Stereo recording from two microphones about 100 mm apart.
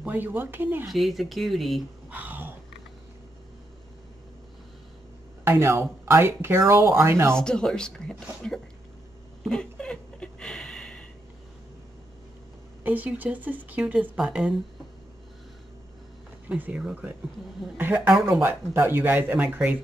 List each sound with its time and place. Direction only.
0.0 s speech: 20° right (ahead or behind)
0.8 s speech: centre (ahead or behind)
2.0 s a sound: 20° right (ahead or behind)
5.4 s speech: 25° right (ahead or behind)
7.3 s speech: 10° left (ahead or behind)
9.4 s a sound: 5° left (ahead or behind)
12.8 s speech: 15° right (ahead or behind)
16.4 s speech: 15° right (ahead or behind)